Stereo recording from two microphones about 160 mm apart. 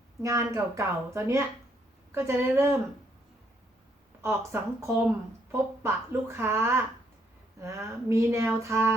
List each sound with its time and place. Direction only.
0.2 s a woman's voice: 20° right (ahead or behind)
4.2 s a woman's voice: 15° right (ahead or behind)